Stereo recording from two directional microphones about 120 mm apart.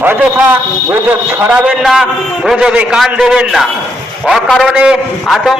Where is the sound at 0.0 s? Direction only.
15° right (ahead or behind).